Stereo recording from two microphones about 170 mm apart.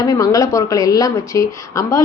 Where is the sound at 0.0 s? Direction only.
20° left (ahead or behind).